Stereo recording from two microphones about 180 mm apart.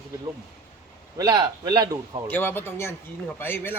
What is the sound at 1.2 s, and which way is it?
A man's voice, 20° right (ahead or behind).